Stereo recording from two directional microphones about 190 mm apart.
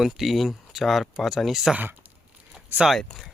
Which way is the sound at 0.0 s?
Centre (ahead or behind).